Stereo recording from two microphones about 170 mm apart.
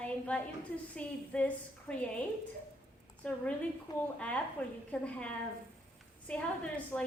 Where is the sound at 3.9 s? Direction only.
20° left (ahead or behind).